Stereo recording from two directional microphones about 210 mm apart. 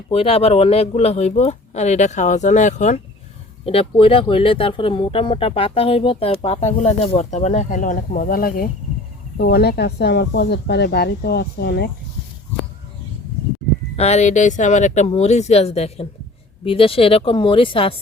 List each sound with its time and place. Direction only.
0.1 s speech: 30° left (ahead or behind); by 11.9 s 50° left (ahead or behind)
13.9 s speech: 30° left (ahead or behind)